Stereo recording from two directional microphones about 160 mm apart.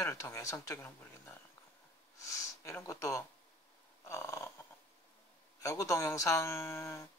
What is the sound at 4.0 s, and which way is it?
Snoring, 15° left (ahead or behind).